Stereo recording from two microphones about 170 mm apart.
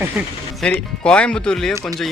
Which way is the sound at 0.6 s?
5° left (ahead or behind).